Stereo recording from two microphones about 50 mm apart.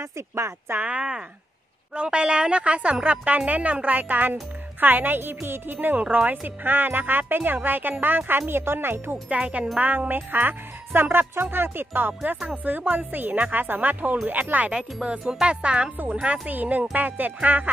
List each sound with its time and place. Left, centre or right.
0.0 s speech: right
0.7 s a woman's voice: right
5.9 s a woman's voice: right
6.4 s speech: right
9.3 s a woman's voice: right
15.0 s speech: centre
15.4 s a woman's voice: right